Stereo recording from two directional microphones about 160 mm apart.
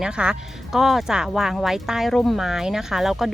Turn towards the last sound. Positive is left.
turn(degrees=0)  # may be behind; listen again after turning